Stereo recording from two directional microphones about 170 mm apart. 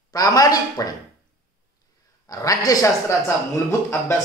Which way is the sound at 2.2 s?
20° left (ahead or behind).